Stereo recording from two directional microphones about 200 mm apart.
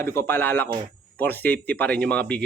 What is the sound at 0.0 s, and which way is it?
Speech, 10° left (ahead or behind).